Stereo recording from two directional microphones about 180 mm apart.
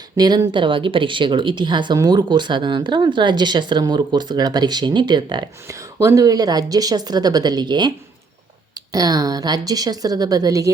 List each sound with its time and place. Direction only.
0.2 s speech: 25° right (ahead or behind)